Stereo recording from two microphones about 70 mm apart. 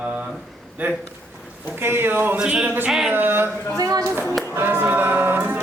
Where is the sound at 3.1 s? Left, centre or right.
Right.